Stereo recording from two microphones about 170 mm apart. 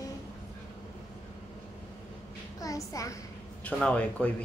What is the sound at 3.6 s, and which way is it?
Speech, 5° left (ahead or behind).